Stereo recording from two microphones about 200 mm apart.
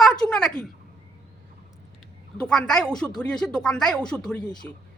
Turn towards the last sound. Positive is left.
turn(degrees=5)  # may be behind; listen again after turning